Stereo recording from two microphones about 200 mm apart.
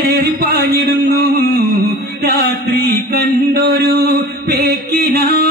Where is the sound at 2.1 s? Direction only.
55° right (ahead or behind).